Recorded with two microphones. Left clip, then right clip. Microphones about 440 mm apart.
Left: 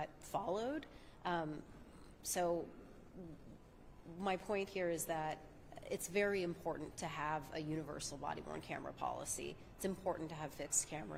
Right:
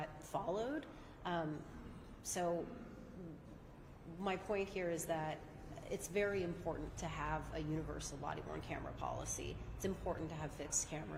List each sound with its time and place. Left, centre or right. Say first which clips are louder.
0.0 s a sound: left 1 dB; centre
2.2 s a woman's voice: left 2 dB; left
4.2 s a woman's voice: left 1 dB; left